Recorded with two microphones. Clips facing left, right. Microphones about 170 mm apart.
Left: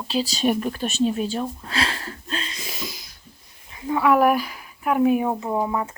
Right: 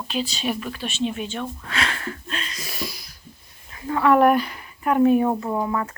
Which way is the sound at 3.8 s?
10° left (ahead or behind).